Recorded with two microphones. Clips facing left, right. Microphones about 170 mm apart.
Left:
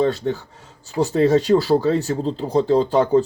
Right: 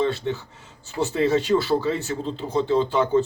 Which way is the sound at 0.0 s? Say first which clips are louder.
Left 4 dB; 40° left (ahead or behind).